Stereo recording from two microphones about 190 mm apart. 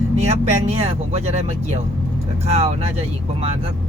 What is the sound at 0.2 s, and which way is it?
Speech, 35° right (ahead or behind).